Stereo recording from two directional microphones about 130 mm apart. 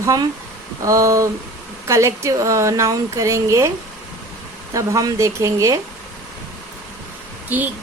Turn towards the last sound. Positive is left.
turn(degrees=-15)  # may be behind; listen again after turning